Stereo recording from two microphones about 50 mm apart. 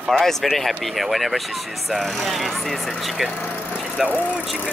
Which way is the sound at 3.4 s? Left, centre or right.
Left.